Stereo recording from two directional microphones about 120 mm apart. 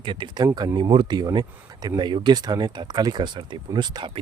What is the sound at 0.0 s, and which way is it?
Speech, 40° right (ahead or behind).